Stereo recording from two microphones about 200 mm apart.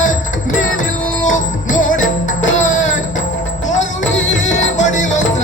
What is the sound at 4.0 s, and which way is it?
Music, 70° left (ahead or behind).